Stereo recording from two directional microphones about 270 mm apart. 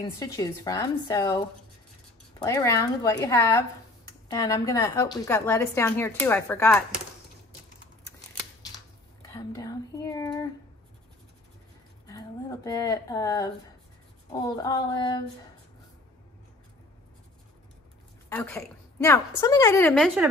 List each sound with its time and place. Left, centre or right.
0.2 s a woman's voice: centre
9.3 s a sound: centre
12.1 s a woman's voice: centre
18.3 s a woman's voice: centre